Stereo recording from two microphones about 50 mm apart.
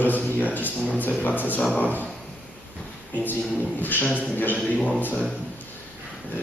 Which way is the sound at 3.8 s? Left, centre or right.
Left.